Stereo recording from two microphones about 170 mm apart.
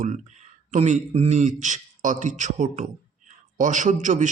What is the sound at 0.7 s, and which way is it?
A man's voice, 45° right (ahead or behind).